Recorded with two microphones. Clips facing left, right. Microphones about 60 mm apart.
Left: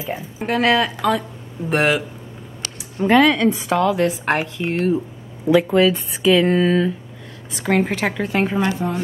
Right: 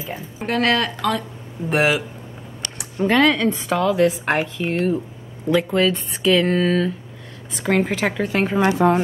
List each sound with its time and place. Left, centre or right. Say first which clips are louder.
0.1 s a woman's voice: left 2 dB; centre
3.1 s a woman's voice: left 3 dB; centre
8.8 s speech: right 8 dB; right